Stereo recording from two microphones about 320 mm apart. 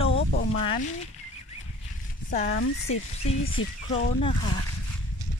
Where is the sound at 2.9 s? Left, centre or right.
Left.